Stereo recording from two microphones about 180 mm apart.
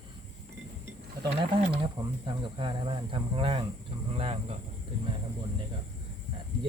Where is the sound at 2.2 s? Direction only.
25° right (ahead or behind).